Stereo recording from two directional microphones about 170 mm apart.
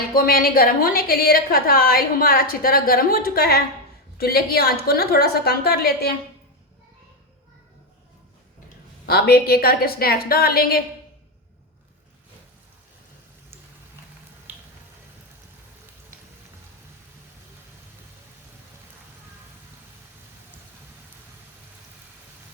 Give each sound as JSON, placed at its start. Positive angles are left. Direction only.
{"t": 0.1, "sound": "a woman's voice", "side_deg": 60}
{"t": 9.0, "sound": "a woman's voice", "side_deg": 65}